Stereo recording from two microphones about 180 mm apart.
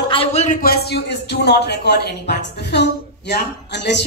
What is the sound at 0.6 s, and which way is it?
Speech, 60° left (ahead or behind).